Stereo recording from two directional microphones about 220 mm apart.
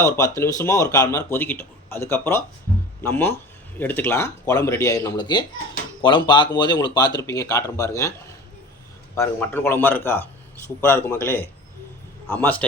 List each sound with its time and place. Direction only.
0.0 s speech: 15° left (ahead or behind)
9.1 s speech: 10° left (ahead or behind)